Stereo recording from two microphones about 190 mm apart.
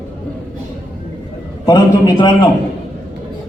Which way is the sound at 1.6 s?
20° left (ahead or behind).